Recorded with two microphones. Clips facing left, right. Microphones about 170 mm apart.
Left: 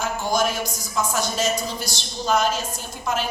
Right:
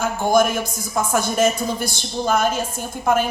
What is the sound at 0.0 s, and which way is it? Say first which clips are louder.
A woman's voice: right 5 dB; 55° right (ahead or behind).